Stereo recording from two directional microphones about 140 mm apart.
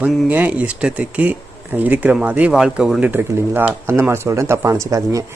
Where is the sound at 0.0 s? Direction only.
10° right (ahead or behind).